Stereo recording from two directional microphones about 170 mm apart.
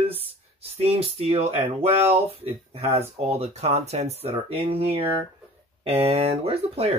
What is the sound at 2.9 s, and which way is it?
Speech, 35° right (ahead or behind).